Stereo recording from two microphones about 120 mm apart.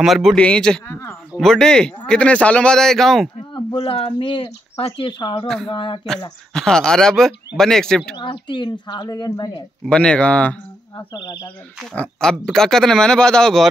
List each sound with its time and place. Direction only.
0.0 s speech: centre (ahead or behind)
3.7 s speech: 50° left (ahead or behind)
6.5 s speech: 5° left (ahead or behind)
8.2 s a woman's voice: 40° left (ahead or behind)
9.8 s speech: 10° left (ahead or behind)
11.0 s a woman's voice: 30° left (ahead or behind)
11.9 s speech: 10° left (ahead or behind)